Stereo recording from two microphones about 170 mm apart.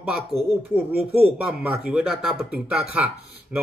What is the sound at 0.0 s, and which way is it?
Speech, 5° right (ahead or behind).